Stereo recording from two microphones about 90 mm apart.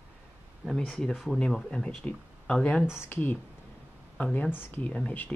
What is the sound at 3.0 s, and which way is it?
Speech, 20° left (ahead or behind).